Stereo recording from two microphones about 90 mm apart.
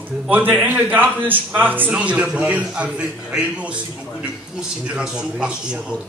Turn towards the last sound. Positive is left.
turn(degrees=-10)  # may be behind; listen again after turning